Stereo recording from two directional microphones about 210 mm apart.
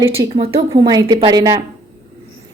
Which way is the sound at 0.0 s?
15° right (ahead or behind).